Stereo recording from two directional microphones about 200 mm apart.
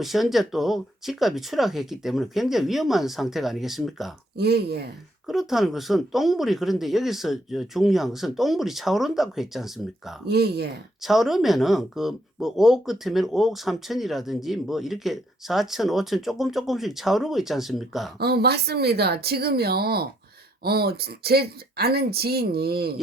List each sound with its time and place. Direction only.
0.0 s speech: centre (ahead or behind)
4.4 s speech: 55° right (ahead or behind)
5.2 s speech: centre (ahead or behind)
10.2 s speech: 55° right (ahead or behind)
11.0 s speech: centre (ahead or behind)
18.2 s speech: 55° right (ahead or behind)